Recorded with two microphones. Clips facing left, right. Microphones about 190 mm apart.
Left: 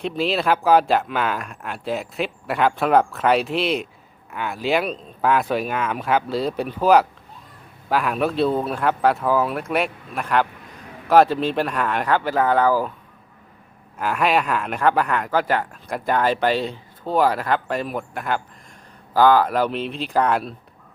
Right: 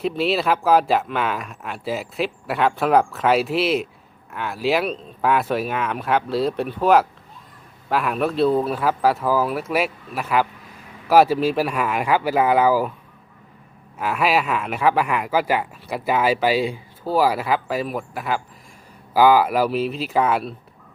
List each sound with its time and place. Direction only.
0.0 s speech: centre (ahead or behind)
14.0 s speech: 5° right (ahead or behind)